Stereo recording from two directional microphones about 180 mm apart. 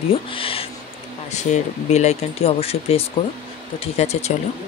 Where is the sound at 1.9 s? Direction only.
35° left (ahead or behind).